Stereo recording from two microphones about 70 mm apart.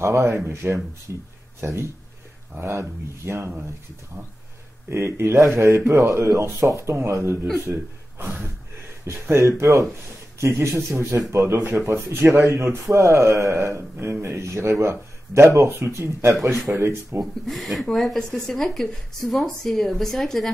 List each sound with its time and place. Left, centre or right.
0.0 s speech: right
4.8 s speech: right
9.0 s speech: right
10.7 s a man's voice: right
11.1 s speech: right
17.5 s speech: centre